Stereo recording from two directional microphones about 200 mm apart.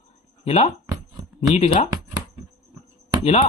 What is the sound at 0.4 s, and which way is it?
Speech, 30° left (ahead or behind).